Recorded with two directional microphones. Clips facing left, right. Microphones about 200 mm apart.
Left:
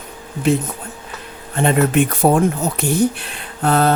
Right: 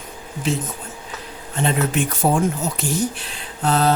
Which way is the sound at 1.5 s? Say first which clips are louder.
Left 6 dB; 55° left (ahead or behind).